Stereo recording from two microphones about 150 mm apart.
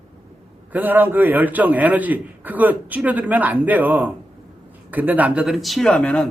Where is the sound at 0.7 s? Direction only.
10° right (ahead or behind).